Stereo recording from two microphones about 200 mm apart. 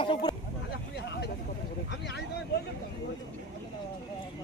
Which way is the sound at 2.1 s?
55° left (ahead or behind).